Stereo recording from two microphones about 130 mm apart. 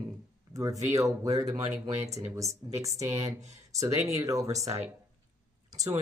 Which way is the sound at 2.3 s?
25° right (ahead or behind).